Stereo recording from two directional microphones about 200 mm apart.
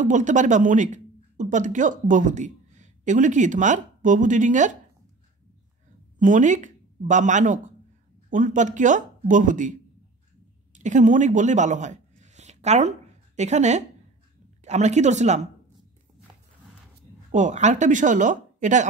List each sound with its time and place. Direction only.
0.0 s speech: 40° right (ahead or behind)
6.1 s speech: 40° right (ahead or behind)
17.3 s speech: 35° right (ahead or behind)